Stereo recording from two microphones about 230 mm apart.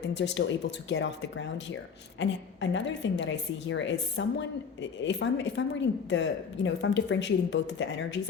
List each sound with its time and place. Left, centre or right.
0.1 s speech: left